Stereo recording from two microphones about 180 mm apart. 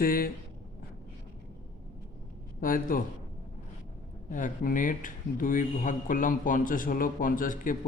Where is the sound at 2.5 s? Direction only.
50° left (ahead or behind).